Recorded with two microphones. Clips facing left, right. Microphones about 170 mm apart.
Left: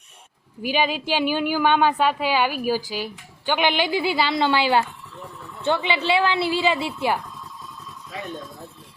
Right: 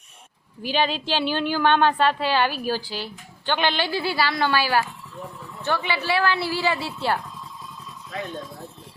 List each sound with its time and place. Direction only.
0.6 s a woman's voice: 10° left (ahead or behind)
8.1 s speech: 5° left (ahead or behind)